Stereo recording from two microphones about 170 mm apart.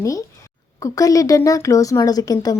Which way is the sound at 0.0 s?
20° left (ahead or behind).